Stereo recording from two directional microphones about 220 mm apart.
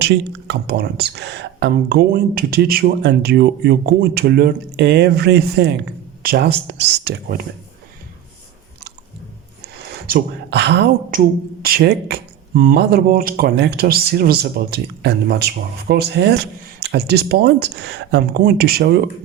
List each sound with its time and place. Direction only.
0.0 s speech: 45° right (ahead or behind)
10.1 s speech: 45° right (ahead or behind)